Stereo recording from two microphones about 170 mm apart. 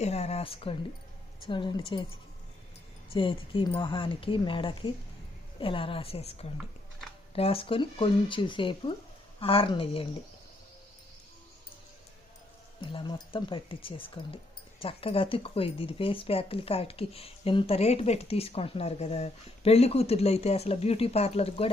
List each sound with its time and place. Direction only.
0.0 s speech: 40° left (ahead or behind)
3.1 s speech: 30° left (ahead or behind)
7.3 s speech: 35° left (ahead or behind)
12.8 s speech: 30° left (ahead or behind)